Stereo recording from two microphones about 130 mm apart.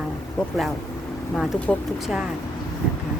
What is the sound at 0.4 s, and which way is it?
Speech, 5° left (ahead or behind).